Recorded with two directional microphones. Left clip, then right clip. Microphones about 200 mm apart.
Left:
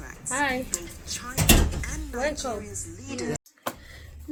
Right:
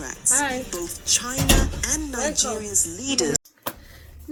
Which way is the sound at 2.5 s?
40° right (ahead or behind).